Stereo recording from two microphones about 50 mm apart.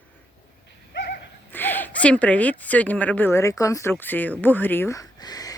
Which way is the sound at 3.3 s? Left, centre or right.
Left.